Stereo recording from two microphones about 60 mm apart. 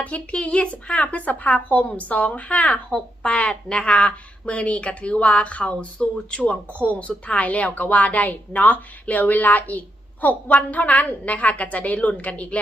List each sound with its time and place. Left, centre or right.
0.0 s speech: left